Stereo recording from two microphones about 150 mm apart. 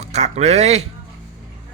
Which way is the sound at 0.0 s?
45° right (ahead or behind).